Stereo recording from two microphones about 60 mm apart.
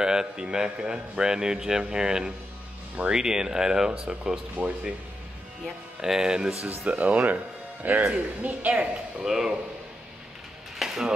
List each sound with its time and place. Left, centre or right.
0.0 s a man's voice: centre
4.6 s speech: right
5.9 s a man's voice: centre
6.9 s speech: right
9.2 s a man's voice: centre
10.8 s a sound: centre